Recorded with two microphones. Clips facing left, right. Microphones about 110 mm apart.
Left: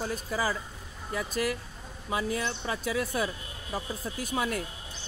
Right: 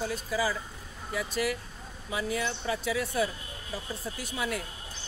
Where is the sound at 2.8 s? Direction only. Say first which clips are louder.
Even; 45° left (ahead or behind).